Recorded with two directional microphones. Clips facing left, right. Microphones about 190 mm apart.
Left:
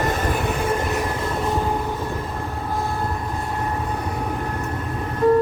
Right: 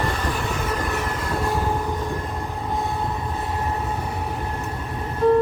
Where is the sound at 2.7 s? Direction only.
Centre (ahead or behind).